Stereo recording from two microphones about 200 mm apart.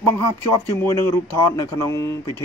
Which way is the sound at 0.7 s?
15° left (ahead or behind).